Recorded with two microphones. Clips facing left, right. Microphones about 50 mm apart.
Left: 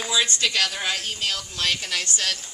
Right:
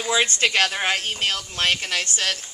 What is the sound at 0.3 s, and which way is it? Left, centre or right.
Speech, right.